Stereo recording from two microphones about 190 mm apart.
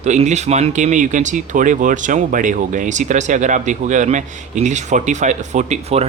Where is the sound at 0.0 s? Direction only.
40° right (ahead or behind).